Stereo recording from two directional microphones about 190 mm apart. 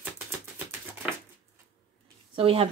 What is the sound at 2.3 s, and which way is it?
Speech, 30° right (ahead or behind).